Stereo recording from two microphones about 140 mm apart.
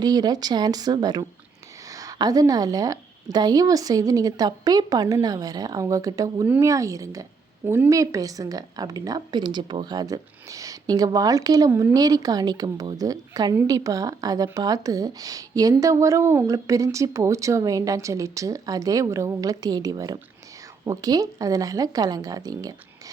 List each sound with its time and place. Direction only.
0.0 s a woman's voice: 30° right (ahead or behind)
11.7 s speech: 15° right (ahead or behind)
11.9 s speech: 25° right (ahead or behind)